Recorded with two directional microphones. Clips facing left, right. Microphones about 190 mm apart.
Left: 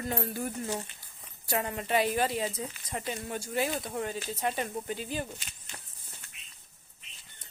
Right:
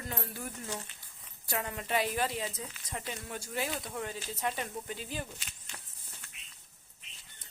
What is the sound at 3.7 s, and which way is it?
Speech, 45° left (ahead or behind).